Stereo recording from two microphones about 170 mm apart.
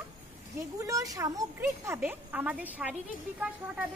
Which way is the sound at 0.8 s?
20° right (ahead or behind).